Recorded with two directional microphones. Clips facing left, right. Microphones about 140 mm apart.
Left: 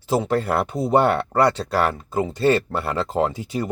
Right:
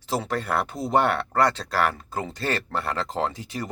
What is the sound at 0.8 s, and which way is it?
Speech, 5° left (ahead or behind).